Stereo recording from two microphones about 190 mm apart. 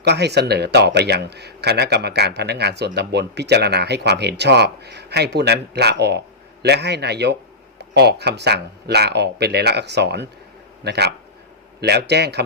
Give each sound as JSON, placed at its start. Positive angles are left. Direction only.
{"t": 0.0, "sound": "speech", "side_deg": -60}